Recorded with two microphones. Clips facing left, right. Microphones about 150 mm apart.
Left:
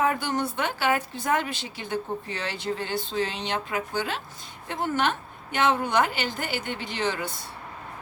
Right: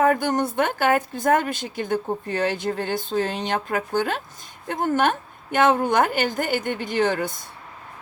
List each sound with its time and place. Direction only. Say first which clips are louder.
0.0 s a woman's voice: right 5 dB; 50° right (ahead or behind)